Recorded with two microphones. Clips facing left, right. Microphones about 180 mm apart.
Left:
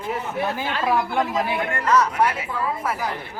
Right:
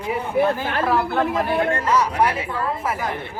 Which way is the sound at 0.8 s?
10° left (ahead or behind).